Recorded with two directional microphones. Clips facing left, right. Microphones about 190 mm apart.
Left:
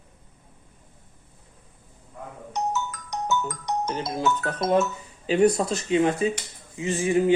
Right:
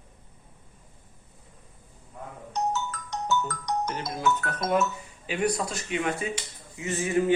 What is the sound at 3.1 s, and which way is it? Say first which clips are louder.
A man's voice: left 1 dB; 20° left (ahead or behind).